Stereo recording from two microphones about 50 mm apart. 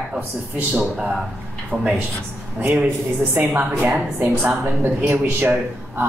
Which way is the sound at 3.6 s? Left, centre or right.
Right.